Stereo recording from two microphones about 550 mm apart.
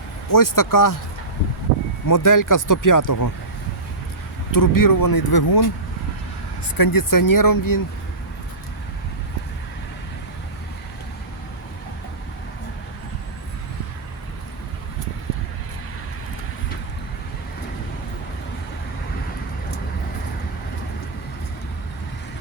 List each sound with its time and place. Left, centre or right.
0.3 s speech: left
2.0 s speech: left
4.5 s speech: left
6.7 s speech: left